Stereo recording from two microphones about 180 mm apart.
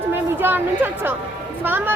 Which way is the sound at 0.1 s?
10° right (ahead or behind).